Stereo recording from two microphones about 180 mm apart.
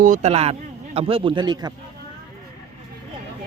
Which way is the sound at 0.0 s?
45° right (ahead or behind).